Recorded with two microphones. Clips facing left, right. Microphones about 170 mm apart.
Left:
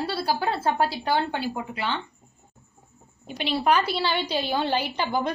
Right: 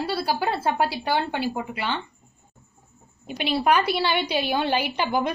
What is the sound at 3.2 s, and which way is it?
A woman's voice, 10° right (ahead or behind).